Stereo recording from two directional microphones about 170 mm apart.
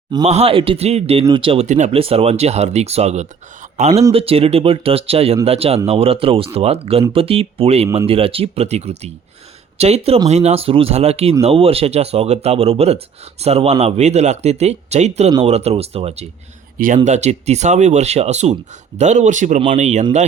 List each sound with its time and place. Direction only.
0.3 s speech: 35° right (ahead or behind)
16.7 s speech: 50° right (ahead or behind)